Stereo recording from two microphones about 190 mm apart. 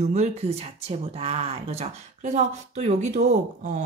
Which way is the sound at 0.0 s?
35° right (ahead or behind).